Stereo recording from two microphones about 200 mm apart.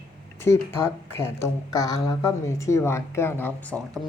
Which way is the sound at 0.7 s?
10° left (ahead or behind).